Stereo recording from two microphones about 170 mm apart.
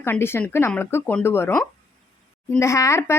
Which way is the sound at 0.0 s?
15° left (ahead or behind).